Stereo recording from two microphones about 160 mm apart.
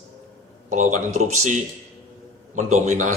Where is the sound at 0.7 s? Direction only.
50° right (ahead or behind).